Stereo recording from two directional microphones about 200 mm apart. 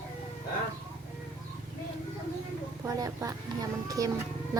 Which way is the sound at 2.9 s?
15° right (ahead or behind).